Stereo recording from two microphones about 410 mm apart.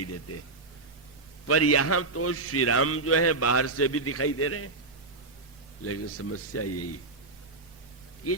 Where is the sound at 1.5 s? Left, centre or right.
Left.